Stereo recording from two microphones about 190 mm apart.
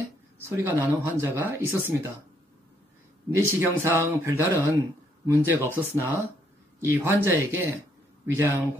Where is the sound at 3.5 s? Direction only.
15° right (ahead or behind).